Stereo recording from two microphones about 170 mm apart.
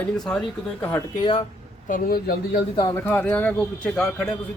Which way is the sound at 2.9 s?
10° left (ahead or behind).